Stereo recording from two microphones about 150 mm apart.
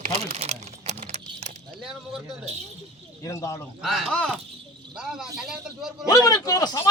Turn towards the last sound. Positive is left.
turn(degrees=25)  # may be behind; listen again after turning